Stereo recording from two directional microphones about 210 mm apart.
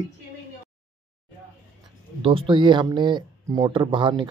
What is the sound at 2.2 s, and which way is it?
Speech, 25° right (ahead or behind).